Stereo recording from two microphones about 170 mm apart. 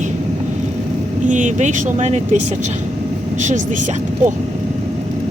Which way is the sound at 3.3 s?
45° right (ahead or behind).